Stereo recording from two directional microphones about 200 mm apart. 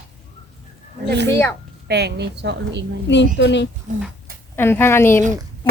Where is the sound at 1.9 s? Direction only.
55° right (ahead or behind).